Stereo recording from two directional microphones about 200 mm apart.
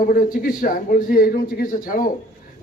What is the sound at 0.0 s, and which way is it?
A man's voice, 45° left (ahead or behind).